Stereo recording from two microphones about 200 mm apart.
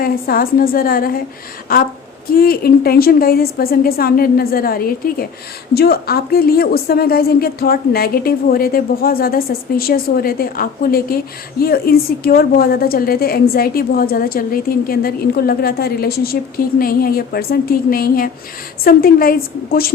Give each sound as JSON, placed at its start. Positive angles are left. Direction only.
{"t": 0.0, "sound": "a woman's voice", "side_deg": 45}